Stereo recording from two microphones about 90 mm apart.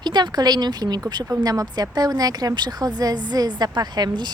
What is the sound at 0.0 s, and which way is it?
Speech, 55° right (ahead or behind).